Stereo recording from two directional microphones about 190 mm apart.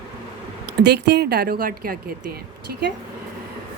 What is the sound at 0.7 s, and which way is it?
Speech, 60° right (ahead or behind).